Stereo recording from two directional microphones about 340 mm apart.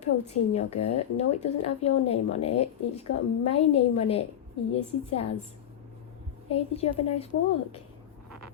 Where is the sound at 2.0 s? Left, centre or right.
Centre.